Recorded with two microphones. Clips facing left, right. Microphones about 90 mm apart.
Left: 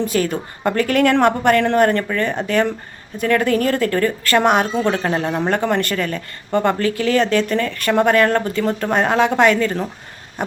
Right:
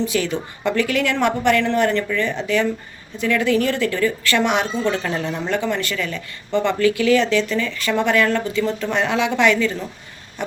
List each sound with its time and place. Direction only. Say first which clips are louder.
0.0 s speech: left 2 dB; 45° left (ahead or behind)